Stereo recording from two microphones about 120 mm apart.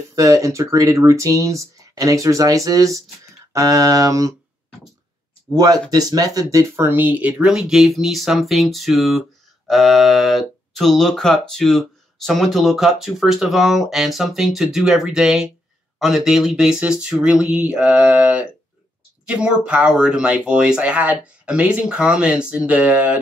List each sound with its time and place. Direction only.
0.1 s speech: 25° right (ahead or behind)
5.5 s speech: 30° right (ahead or behind); by 23.1 s 10° right (ahead or behind)